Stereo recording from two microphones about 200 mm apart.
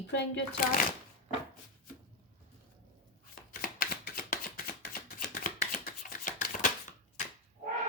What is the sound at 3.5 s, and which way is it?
Chopping, 45° left (ahead or behind).